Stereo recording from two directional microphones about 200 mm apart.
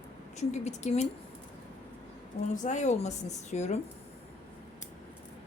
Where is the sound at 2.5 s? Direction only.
35° left (ahead or behind).